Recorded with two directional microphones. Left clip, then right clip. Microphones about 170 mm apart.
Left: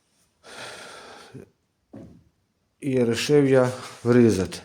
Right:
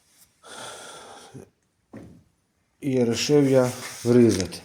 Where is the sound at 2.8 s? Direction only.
5° left (ahead or behind).